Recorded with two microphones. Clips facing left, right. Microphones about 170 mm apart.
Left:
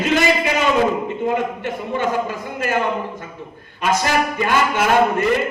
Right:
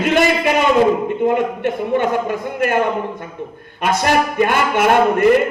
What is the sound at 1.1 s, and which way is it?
A man's voice, 55° right (ahead or behind).